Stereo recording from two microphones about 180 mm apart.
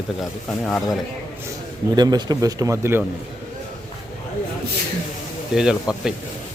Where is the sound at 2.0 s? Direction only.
20° right (ahead or behind).